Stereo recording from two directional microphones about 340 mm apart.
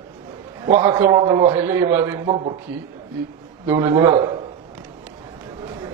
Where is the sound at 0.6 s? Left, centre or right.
Centre.